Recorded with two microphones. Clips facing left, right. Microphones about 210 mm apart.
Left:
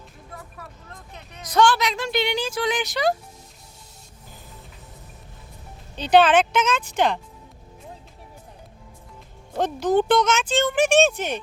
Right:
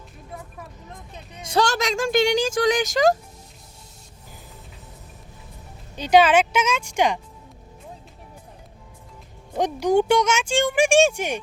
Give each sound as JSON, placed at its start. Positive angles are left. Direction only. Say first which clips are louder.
{"t": 0.9, "sound": "speech", "louder": "right 2 dB", "side_deg": -20}
{"t": 1.6, "sound": "speech", "louder": "left 1 dB", "side_deg": -45}
{"t": 6.0, "sound": "speech", "louder": "even", "side_deg": -10}
{"t": 9.5, "sound": "speech", "louder": "right 1 dB", "side_deg": -15}